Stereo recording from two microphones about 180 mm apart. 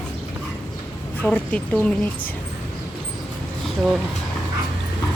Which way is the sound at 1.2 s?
5° left (ahead or behind).